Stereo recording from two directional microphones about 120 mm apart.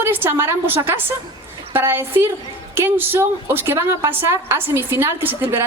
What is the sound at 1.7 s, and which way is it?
A woman's voice, 20° right (ahead or behind).